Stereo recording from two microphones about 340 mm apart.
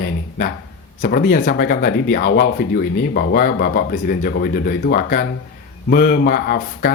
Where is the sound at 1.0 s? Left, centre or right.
Left.